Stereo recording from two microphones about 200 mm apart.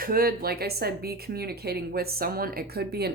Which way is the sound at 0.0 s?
45° right (ahead or behind).